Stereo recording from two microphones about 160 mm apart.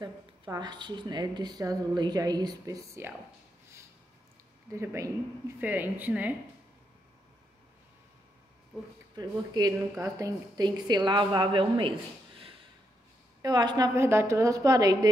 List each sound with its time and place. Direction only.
0.0 s speech: 25° right (ahead or behind)
4.7 s speech: 20° right (ahead or behind)
9.1 s speech: 25° right (ahead or behind)
13.4 s speech: 25° right (ahead or behind)